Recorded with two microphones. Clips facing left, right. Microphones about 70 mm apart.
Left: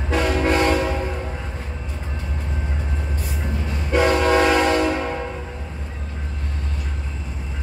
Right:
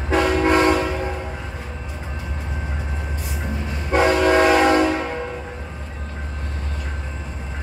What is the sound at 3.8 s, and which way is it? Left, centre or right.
Train, centre.